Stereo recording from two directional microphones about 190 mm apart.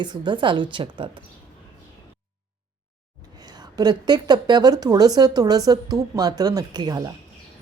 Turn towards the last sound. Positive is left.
turn(degrees=-20)  # may be behind; listen again after turning